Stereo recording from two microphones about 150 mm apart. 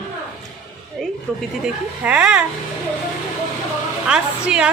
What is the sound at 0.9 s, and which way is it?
A woman's voice, centre (ahead or behind).